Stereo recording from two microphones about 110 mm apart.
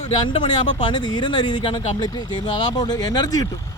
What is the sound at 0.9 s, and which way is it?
Speech, 45° left (ahead or behind).